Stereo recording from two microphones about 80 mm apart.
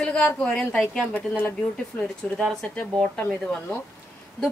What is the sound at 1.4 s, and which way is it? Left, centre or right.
Speech, left.